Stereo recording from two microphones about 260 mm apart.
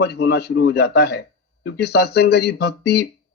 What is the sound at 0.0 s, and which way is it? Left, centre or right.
A man's voice, left.